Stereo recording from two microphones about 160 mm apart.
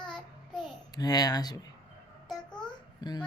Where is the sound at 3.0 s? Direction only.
25° left (ahead or behind).